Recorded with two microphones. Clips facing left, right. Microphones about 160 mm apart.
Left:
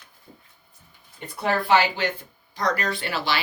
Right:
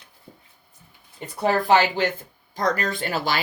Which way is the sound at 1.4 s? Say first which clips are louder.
Right 2 dB; 40° right (ahead or behind).